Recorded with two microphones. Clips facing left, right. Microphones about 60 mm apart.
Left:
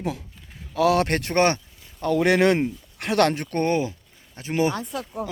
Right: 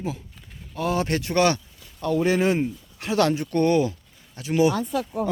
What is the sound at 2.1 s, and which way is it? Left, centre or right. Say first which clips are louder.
Speech: left 2 dB; left.